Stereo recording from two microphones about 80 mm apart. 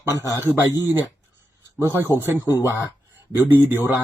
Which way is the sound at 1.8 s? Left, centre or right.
Right.